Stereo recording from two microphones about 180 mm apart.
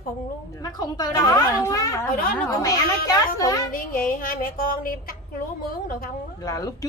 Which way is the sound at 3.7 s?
50° left (ahead or behind).